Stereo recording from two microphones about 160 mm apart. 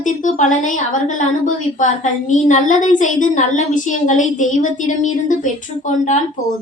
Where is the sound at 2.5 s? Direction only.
50° left (ahead or behind).